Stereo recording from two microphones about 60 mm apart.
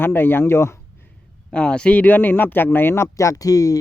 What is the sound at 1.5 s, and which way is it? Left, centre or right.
Speech, centre.